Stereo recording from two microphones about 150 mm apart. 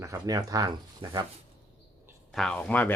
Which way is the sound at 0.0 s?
20° right (ahead or behind).